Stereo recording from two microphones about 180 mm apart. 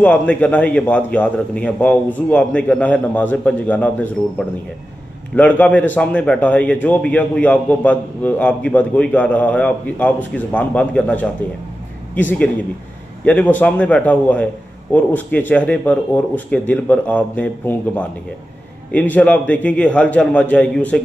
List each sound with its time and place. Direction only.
0.0 s a man's voice: 5° left (ahead or behind)
5.3 s a man's voice: 10° left (ahead or behind)